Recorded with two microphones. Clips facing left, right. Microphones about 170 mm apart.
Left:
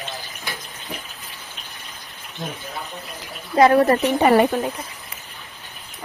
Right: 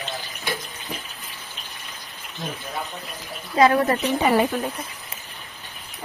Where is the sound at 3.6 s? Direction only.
55° left (ahead or behind).